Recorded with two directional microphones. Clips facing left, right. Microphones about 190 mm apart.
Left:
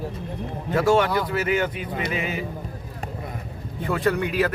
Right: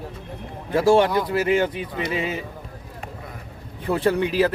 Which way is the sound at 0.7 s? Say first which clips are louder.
Right 3 dB; 30° right (ahead or behind).